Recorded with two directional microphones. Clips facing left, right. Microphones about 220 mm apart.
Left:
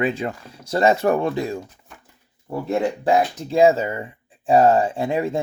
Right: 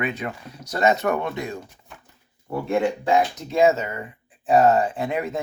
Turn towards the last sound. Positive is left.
turn(degrees=30)  # may be behind; listen again after turning